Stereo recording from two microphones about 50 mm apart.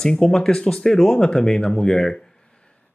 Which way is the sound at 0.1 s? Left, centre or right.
Centre.